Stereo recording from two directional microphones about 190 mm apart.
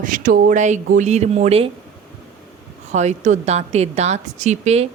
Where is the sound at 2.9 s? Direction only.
35° right (ahead or behind).